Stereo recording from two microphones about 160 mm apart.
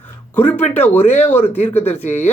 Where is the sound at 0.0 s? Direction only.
10° left (ahead or behind).